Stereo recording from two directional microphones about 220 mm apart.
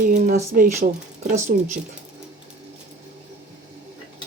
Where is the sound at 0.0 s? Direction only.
35° right (ahead or behind).